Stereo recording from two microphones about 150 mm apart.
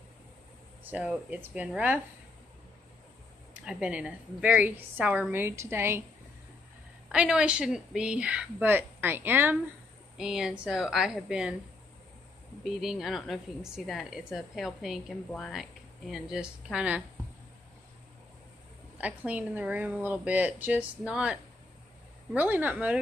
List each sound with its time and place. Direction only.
0.8 s speech: 10° right (ahead or behind)
3.5 s speech: 5° right (ahead or behind)
7.1 s a woman's voice: 5° right (ahead or behind)
12.6 s a woman's voice: centre (ahead or behind)
18.9 s speech: 10° right (ahead or behind)